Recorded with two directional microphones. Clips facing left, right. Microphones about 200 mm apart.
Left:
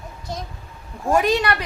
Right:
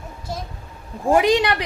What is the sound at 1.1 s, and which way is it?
Speech, 15° right (ahead or behind).